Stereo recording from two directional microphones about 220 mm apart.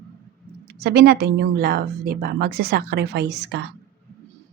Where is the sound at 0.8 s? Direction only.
45° right (ahead or behind).